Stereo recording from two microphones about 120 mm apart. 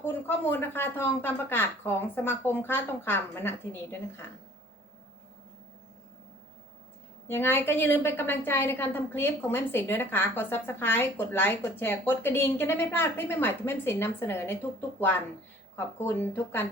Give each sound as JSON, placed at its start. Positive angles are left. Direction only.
{"t": 0.0, "sound": "a woman's voice", "side_deg": 20}
{"t": 7.3, "sound": "a woman's voice", "side_deg": 20}